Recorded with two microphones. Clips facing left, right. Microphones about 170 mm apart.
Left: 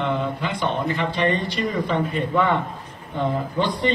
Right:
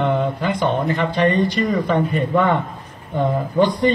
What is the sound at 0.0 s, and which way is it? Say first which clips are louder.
Speech: right 5 dB; 45° right (ahead or behind).